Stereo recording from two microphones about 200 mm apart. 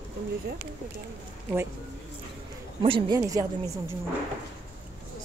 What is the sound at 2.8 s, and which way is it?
A woman's voice, 25° right (ahead or behind).